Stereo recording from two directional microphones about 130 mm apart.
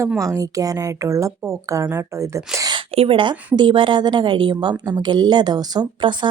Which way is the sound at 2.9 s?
45° right (ahead or behind).